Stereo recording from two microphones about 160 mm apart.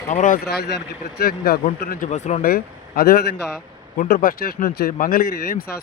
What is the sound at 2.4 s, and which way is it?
Speech, 70° left (ahead or behind).